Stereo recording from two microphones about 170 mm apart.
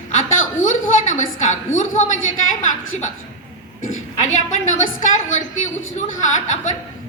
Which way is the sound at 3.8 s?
45° left (ahead or behind).